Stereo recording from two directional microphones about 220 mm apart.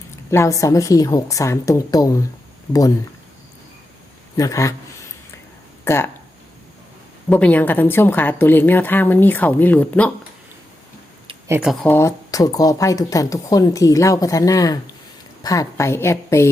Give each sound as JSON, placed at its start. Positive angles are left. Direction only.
{"t": 0.3, "sound": "speech", "side_deg": 15}
{"t": 4.4, "sound": "speech", "side_deg": 15}
{"t": 5.8, "sound": "speech", "side_deg": 10}
{"t": 7.3, "sound": "speech", "side_deg": 5}
{"t": 11.4, "sound": "speech", "side_deg": -10}
{"t": 11.7, "sound": "speech", "side_deg": 5}